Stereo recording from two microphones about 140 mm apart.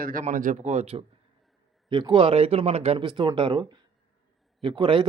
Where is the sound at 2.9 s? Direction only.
35° right (ahead or behind).